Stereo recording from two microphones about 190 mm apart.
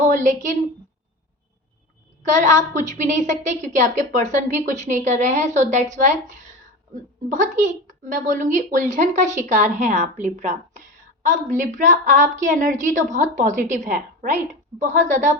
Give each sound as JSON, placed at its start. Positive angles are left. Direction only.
{"t": 0.0, "sound": "a woman's voice", "side_deg": -40}
{"t": 2.2, "sound": "speech", "side_deg": -40}